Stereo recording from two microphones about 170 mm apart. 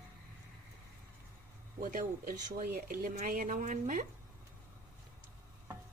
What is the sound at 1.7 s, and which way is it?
Speech, 55° right (ahead or behind).